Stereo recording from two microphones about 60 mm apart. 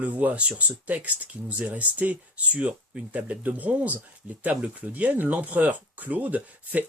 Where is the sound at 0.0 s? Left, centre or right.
Right.